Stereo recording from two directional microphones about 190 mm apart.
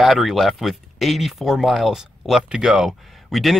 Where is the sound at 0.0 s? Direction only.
Centre (ahead or behind).